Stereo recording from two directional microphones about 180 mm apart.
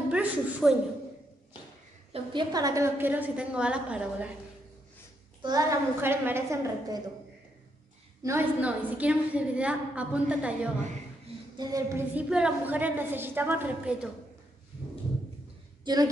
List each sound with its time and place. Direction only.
0.1 s a woman's voice: 10° right (ahead or behind)
2.1 s a woman's voice: 25° right (ahead or behind); by 4.3 s 5° right (ahead or behind)
5.4 s a woman's voice: 20° right (ahead or behind)
8.2 s a woman's voice: 15° right (ahead or behind)
11.5 s a woman's voice: 20° right (ahead or behind)
12.1 s a woman's voice: 5° right (ahead or behind)
15.8 s a woman's voice: 20° right (ahead or behind)